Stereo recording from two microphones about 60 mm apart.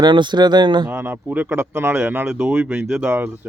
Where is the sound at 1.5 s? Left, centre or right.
Right.